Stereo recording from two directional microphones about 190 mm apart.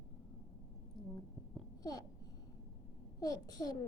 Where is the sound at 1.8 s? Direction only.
20° left (ahead or behind).